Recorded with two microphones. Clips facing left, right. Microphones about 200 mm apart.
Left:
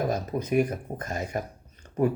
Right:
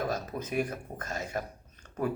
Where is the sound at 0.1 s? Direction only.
15° left (ahead or behind).